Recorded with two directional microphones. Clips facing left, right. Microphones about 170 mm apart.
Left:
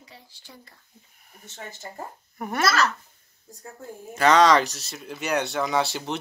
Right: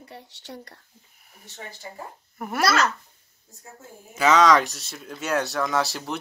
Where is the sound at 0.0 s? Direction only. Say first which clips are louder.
Right 7 dB; 65° right (ahead or behind).